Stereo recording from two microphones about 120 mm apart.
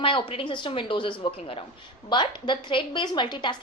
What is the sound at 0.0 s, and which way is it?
A woman's voice, 45° left (ahead or behind).